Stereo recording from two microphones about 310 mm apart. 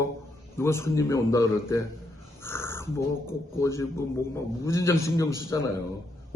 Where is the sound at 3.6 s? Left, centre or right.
Centre.